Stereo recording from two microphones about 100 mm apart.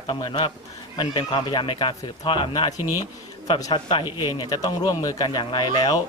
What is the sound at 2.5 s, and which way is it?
A man's voice, 40° left (ahead or behind).